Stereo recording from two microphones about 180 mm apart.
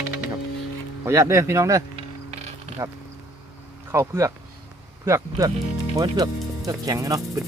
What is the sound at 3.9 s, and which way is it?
Speech, 15° right (ahead or behind).